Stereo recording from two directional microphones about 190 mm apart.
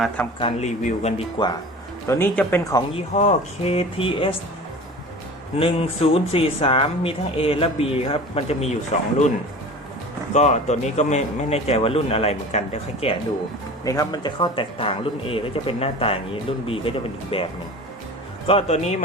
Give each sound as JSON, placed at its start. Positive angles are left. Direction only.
{"t": 0.3, "sound": "a man's voice", "side_deg": 30}
{"t": 2.0, "sound": "speech", "side_deg": 10}
{"t": 3.2, "sound": "a man's voice", "side_deg": 35}
{"t": 5.5, "sound": "speech", "side_deg": 30}
{"t": 10.3, "sound": "a man's voice", "side_deg": 35}
{"t": 13.8, "sound": "a man's voice", "side_deg": 20}